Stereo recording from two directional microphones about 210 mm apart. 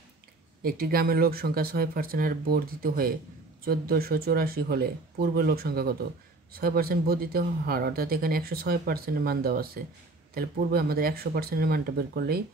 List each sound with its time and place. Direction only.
0.6 s speech: 45° right (ahead or behind)